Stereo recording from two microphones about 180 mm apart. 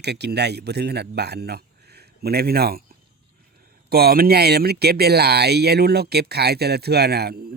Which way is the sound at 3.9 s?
60° right (ahead or behind).